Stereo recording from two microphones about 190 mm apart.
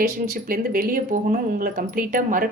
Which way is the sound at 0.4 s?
50° right (ahead or behind).